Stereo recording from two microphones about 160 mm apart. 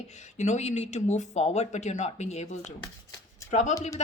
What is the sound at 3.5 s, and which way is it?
Speech, 45° left (ahead or behind).